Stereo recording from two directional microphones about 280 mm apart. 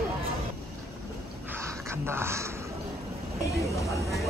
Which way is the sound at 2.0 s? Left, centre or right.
Centre.